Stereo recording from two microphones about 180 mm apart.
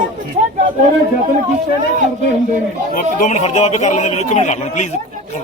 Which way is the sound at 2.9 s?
45° left (ahead or behind).